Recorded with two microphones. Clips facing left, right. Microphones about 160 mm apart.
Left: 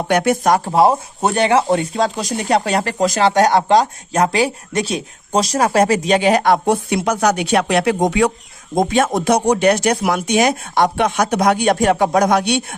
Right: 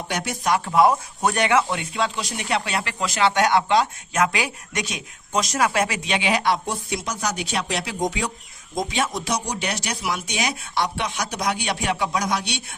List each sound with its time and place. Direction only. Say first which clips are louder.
0.0 s speech: left 11 dB; 60° left (ahead or behind)
0.5 s speech: left 1 dB; 35° left (ahead or behind); by 8.3 s 65° left (ahead or behind)
8.7 s speech: left 9 dB; 55° left (ahead or behind)